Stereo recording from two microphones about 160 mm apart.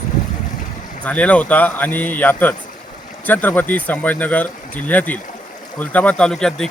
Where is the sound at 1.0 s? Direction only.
10° left (ahead or behind).